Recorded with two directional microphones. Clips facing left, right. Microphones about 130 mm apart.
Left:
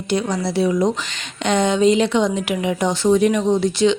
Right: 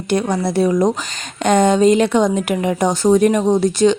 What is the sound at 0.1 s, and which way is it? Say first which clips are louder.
Speech: right 3 dB; 50° right (ahead or behind).